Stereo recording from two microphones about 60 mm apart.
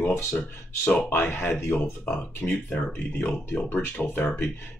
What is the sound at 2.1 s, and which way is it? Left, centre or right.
Speech, left.